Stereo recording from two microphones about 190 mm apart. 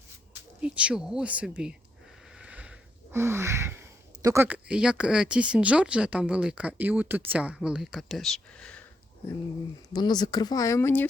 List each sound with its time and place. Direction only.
0.6 s speech: 5° right (ahead or behind)
9.9 s speech: 20° left (ahead or behind)